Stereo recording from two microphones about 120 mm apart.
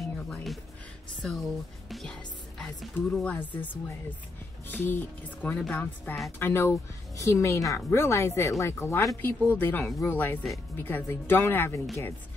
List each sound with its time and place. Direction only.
0.3 s music: centre (ahead or behind)
1.2 s speech: centre (ahead or behind)
5.6 s speech: 5° left (ahead or behind)
6.1 s a woman's voice: 15° left (ahead or behind)